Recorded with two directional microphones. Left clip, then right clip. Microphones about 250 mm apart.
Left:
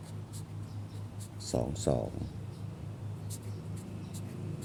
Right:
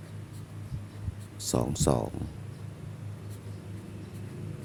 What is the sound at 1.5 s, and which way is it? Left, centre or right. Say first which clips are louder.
Speech: right 4 dB; right.